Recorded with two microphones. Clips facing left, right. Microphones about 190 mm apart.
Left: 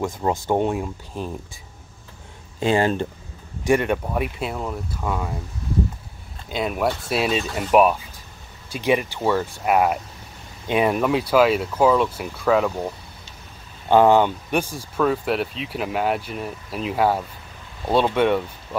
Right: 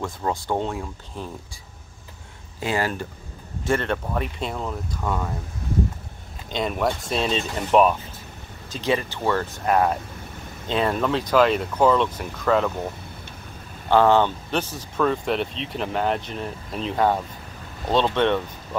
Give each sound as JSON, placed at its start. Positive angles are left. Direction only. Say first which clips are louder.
{"t": 0.0, "sound": "speech", "louder": "left 4 dB", "side_deg": 20}
{"t": 2.6, "sound": "speech", "louder": "left 6 dB", "side_deg": 25}
{"t": 3.6, "sound": "speech", "louder": "left 4 dB", "side_deg": 15}
{"t": 6.5, "sound": "speech", "louder": "left 1 dB", "side_deg": 5}
{"t": 13.8, "sound": "speech", "louder": "left 2 dB", "side_deg": 15}